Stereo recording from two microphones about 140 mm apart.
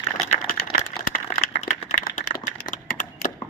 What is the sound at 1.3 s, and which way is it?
Typing, 60° left (ahead or behind).